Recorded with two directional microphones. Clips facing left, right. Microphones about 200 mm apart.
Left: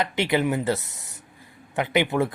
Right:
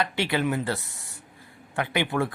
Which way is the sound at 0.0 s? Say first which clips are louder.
Left 3 dB; 20° left (ahead or behind).